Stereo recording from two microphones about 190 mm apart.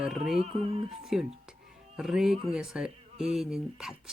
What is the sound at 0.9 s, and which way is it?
Speech, centre (ahead or behind).